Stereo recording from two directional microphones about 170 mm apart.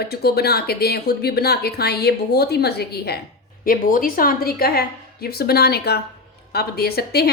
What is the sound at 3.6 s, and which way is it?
A woman's voice, 55° left (ahead or behind).